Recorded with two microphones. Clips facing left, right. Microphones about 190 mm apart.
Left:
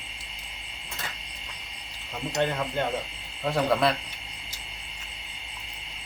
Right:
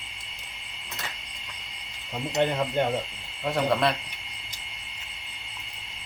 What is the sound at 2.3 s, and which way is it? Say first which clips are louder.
Speech: right 3 dB; 15° right (ahead or behind).